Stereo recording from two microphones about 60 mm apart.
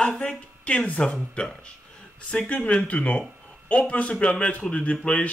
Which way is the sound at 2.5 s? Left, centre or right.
Centre.